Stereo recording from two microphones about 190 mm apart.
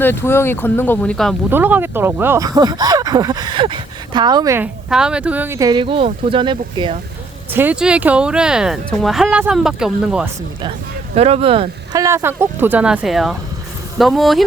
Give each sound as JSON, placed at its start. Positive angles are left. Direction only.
{"t": 0.0, "sound": "speech", "side_deg": 10}
{"t": 1.5, "sound": "speech", "side_deg": -10}
{"t": 7.5, "sound": "speech", "side_deg": -10}
{"t": 11.1, "sound": "speech", "side_deg": -30}
{"t": 11.9, "sound": "speech", "side_deg": -15}